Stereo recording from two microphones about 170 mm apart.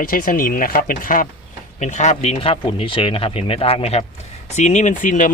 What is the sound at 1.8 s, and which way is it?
Speech, 45° left (ahead or behind).